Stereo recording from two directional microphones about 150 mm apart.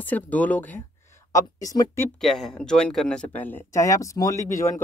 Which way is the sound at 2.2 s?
Centre (ahead or behind).